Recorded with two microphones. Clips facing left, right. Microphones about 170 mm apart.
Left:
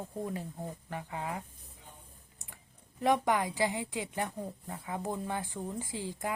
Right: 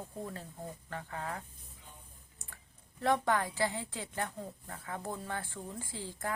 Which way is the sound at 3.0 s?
15° left (ahead or behind).